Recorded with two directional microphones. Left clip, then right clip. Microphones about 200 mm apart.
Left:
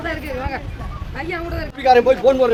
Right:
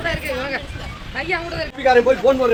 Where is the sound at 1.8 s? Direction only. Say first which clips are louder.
Left 1 dB; 15° left (ahead or behind).